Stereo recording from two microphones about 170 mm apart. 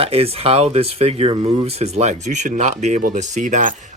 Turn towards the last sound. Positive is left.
turn(degrees=-45)  # may be behind; listen again after turning